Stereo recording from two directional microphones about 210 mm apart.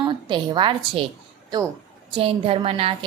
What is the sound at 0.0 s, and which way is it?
A woman's voice, 20° right (ahead or behind).